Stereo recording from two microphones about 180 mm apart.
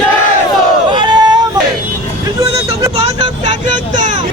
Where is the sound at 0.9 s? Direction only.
25° right (ahead or behind).